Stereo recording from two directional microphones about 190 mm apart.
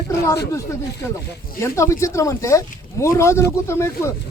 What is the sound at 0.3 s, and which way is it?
Speech, 15° left (ahead or behind).